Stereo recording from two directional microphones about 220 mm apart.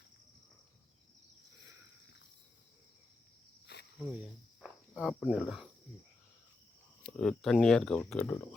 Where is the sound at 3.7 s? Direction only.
50° left (ahead or behind).